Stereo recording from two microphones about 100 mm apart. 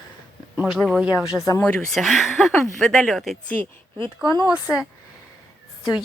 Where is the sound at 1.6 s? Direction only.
10° left (ahead or behind).